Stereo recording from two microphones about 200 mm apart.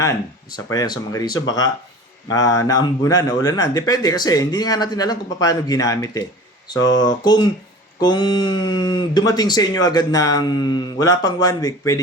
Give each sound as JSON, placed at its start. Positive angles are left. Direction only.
{"t": 0.0, "sound": "speech", "side_deg": 15}